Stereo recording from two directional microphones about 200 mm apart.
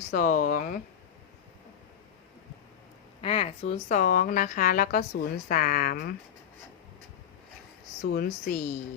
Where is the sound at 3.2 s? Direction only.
30° left (ahead or behind); by 6.1 s 45° left (ahead or behind).